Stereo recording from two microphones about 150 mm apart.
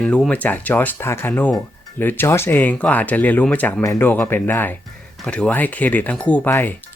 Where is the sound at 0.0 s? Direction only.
5° left (ahead or behind).